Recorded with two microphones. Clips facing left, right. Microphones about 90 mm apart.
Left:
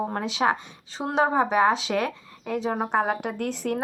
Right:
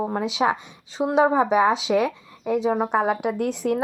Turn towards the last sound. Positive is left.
turn(degrees=-15)  # may be behind; listen again after turning